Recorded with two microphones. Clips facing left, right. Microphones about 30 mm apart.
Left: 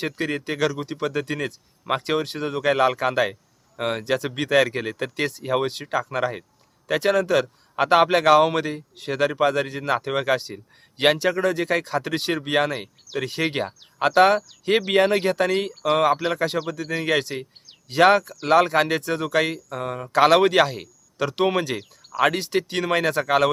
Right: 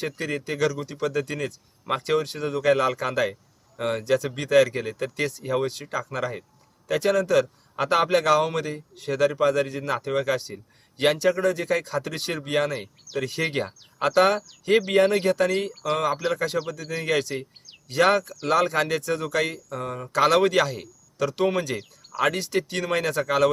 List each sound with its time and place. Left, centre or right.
0.0 s speech: left
1.8 s speech: centre
2.0 s speech: left
4.0 s speech: left
16.4 s speech: left
16.6 s speech: left
16.9 s speech: left